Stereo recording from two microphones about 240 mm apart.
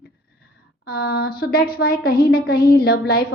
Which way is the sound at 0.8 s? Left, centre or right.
Left.